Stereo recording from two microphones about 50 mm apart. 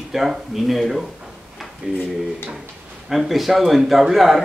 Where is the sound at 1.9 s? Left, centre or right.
Right.